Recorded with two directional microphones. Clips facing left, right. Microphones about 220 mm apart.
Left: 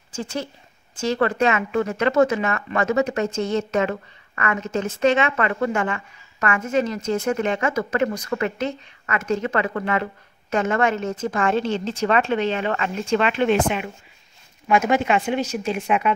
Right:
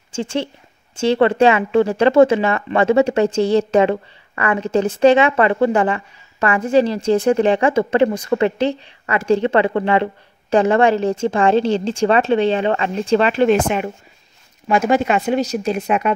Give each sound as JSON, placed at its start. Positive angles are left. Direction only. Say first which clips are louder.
{"t": 0.1, "sound": "speech", "louder": "right 6 dB", "side_deg": -25}